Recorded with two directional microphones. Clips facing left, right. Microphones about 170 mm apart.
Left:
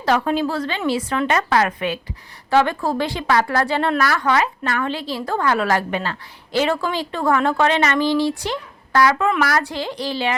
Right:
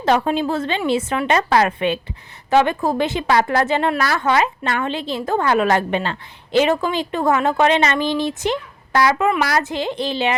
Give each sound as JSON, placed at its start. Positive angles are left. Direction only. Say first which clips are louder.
{"t": 0.0, "sound": "a woman's voice", "louder": "right 1 dB", "side_deg": -20}